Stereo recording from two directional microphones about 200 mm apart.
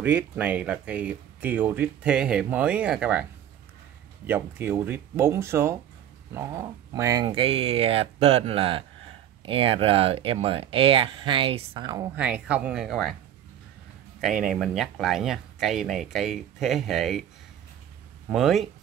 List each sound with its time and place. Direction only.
0.0 s speech: 10° right (ahead or behind)
4.3 s speech: 10° right (ahead or behind)
7.2 s speech: 30° right (ahead or behind)
12.2 s speech: 5° right (ahead or behind)
14.2 s speech: 5° right (ahead or behind)
18.3 s speech: centre (ahead or behind)